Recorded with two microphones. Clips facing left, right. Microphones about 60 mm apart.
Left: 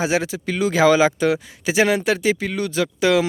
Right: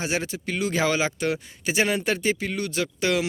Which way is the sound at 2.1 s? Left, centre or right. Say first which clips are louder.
Left 5 dB; left.